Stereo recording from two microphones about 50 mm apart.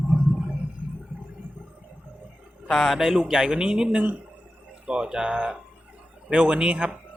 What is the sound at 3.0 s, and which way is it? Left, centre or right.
Speech, centre.